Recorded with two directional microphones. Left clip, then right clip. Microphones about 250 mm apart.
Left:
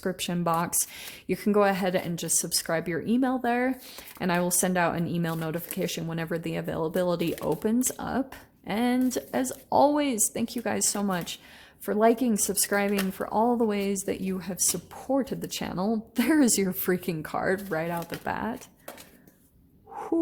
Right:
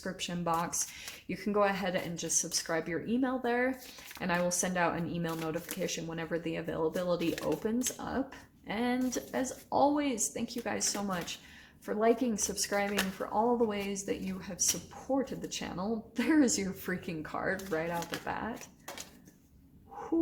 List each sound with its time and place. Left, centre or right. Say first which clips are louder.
0.0 s speech: left 7 dB; left